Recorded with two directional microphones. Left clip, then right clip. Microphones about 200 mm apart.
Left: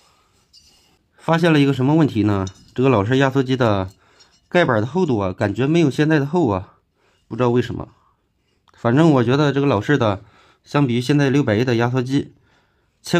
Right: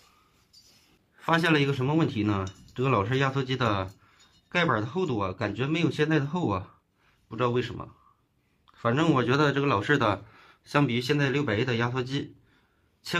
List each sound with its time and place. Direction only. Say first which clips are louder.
1.1 s speech: left 7 dB; 35° left (ahead or behind)
11.0 s speech: left 8 dB; 40° left (ahead or behind)